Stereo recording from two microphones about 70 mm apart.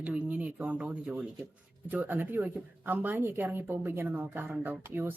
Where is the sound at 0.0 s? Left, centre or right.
Centre.